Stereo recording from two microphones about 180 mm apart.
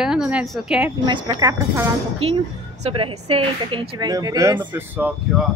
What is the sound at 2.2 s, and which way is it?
Speech, 35° right (ahead or behind).